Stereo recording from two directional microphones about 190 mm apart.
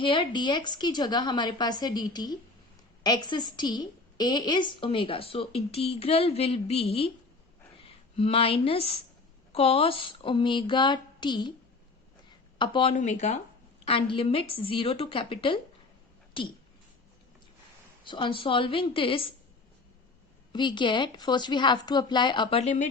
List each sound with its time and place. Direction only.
0.0 s a woman's voice: 25° left (ahead or behind)
12.5 s a woman's voice: 25° left (ahead or behind)
18.0 s a woman's voice: 25° left (ahead or behind)
20.5 s a woman's voice: 25° left (ahead or behind)